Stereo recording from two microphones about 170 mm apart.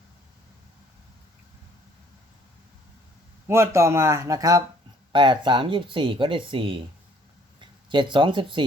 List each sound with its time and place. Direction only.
3.4 s speech: 15° right (ahead or behind)